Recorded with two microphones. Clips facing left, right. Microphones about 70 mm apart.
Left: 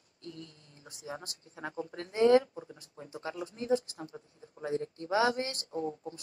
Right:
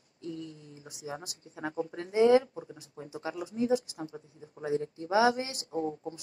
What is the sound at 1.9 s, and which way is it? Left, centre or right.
A man's voice, right.